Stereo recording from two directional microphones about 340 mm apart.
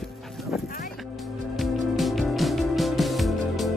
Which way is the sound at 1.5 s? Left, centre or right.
Centre.